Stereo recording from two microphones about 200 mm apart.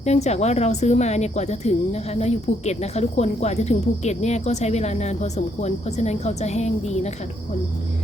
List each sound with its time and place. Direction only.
0.0 s speech: 35° left (ahead or behind)